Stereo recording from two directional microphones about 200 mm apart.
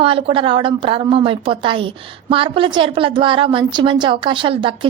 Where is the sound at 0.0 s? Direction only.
25° right (ahead or behind).